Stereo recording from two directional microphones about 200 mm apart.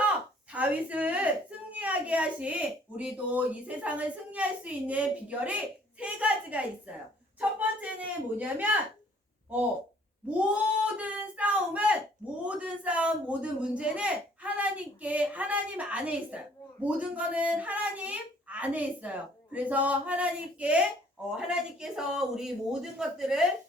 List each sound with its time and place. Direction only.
0.5 s a woman's voice: 5° right (ahead or behind)
10.2 s a woman's voice: 5° right (ahead or behind)